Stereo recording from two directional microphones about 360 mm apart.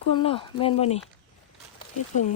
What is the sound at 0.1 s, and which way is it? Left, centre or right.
Speech, centre.